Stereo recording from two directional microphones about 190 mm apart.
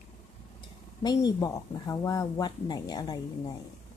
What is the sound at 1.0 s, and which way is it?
Speech, 20° left (ahead or behind).